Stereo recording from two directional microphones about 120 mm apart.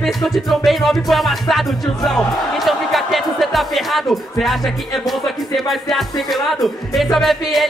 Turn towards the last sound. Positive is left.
turn(degrees=0)  # may be behind; listen again after turning